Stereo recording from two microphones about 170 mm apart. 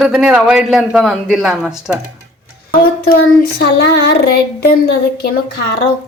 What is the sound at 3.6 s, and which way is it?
Child singing, 75° left (ahead or behind).